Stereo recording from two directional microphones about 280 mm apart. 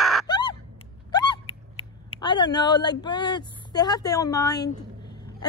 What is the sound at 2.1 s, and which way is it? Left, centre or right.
A woman's voice, centre.